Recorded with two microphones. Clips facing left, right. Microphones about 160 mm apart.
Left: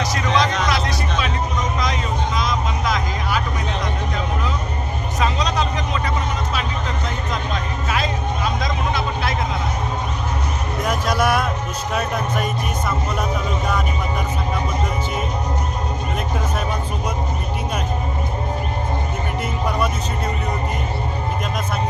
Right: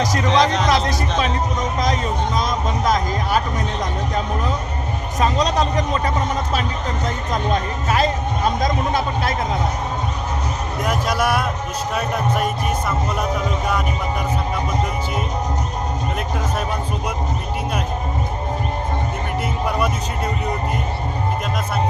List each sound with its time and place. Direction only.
0.0 s music: 45° right (ahead or behind)
1.8 s a sound: 45° right (ahead or behind)
5.2 s vehicle: 40° right (ahead or behind)
7.9 s music: 40° right (ahead or behind)
8.6 s vehicle: 45° right (ahead or behind)
10.8 s a sound: 10° right (ahead or behind)